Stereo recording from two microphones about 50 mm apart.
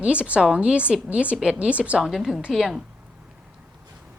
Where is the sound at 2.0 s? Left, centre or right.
Centre.